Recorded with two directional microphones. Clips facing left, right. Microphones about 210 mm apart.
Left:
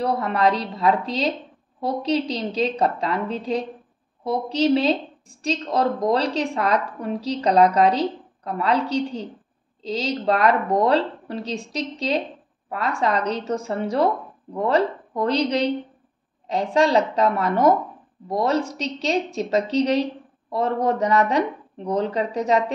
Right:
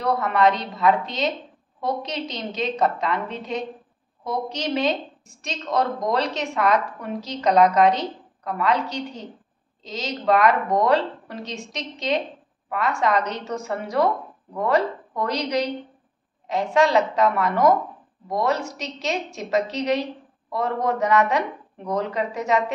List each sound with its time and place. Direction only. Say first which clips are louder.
0.0 s speech: right 1 dB; 30° left (ahead or behind)